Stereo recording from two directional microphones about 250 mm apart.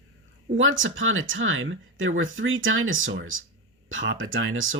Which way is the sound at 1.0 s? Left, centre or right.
Right.